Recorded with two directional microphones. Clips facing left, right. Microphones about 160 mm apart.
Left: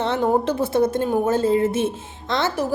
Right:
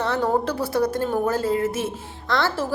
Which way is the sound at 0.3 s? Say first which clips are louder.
Left 3 dB; 20° left (ahead or behind).